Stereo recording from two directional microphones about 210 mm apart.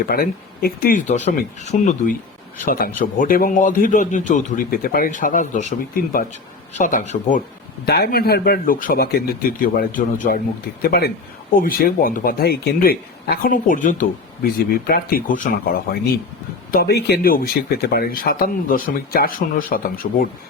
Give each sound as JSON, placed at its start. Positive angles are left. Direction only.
{"t": 0.0, "sound": "speech", "side_deg": 45}
{"t": 7.9, "sound": "speech", "side_deg": 50}